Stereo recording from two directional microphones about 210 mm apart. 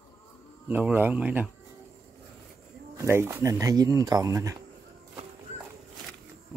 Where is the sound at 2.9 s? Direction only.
10° right (ahead or behind).